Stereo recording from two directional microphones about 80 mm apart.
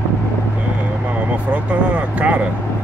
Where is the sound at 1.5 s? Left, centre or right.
Centre.